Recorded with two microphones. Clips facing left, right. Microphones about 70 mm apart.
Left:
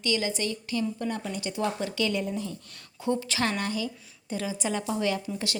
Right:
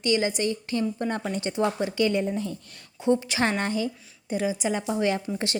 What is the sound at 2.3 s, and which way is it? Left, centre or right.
Speech, right.